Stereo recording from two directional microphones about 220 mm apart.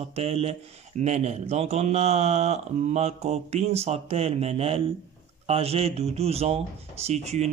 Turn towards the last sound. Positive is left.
turn(degrees=-30)  # may be behind; listen again after turning